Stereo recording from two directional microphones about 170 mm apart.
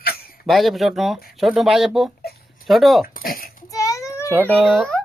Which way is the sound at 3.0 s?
55° left (ahead or behind).